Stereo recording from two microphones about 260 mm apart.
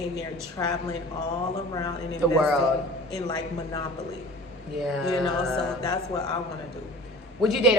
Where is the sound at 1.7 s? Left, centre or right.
Centre.